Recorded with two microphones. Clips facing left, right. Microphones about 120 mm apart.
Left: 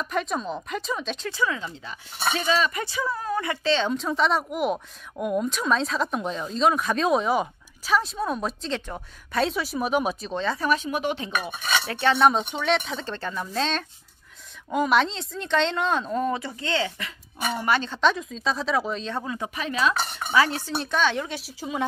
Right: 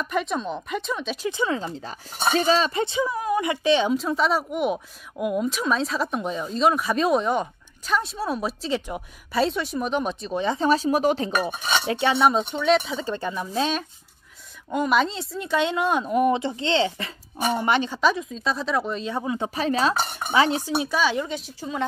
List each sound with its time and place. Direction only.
0.0 s speech: centre (ahead or behind)
1.3 s speech: 25° right (ahead or behind)
1.6 s speech: 40° right (ahead or behind); by 3.9 s 15° right (ahead or behind)
3.9 s speech: centre (ahead or behind)
10.3 s speech: 15° right (ahead or behind)
10.7 s speech: 35° right (ahead or behind)
11.9 s speech: 15° right (ahead or behind)
12.2 s speech: centre (ahead or behind)
14.7 s speech: centre (ahead or behind); by 17.9 s 20° right (ahead or behind)
17.9 s speech: 5° right (ahead or behind)
19.2 s speech: 25° right (ahead or behind)
20.2 s speech: 20° right (ahead or behind); by 21.8 s 10° left (ahead or behind)